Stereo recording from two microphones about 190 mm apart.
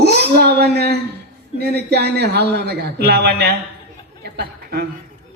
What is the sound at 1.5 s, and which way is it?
A man's voice, 60° right (ahead or behind).